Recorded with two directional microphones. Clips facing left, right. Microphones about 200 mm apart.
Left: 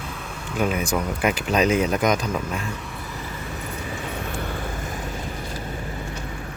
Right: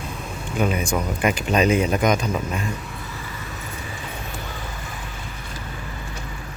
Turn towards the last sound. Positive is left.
turn(degrees=50)  # may be behind; listen again after turning